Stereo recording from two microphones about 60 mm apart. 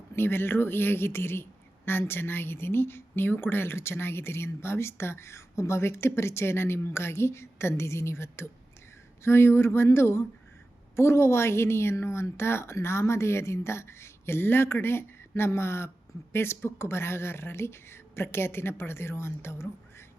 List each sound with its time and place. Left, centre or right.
0.2 s a woman's voice: left